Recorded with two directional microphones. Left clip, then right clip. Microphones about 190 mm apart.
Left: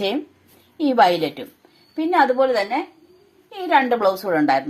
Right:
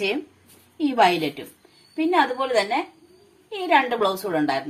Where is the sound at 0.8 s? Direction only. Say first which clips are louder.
Left 3 dB; 40° left (ahead or behind).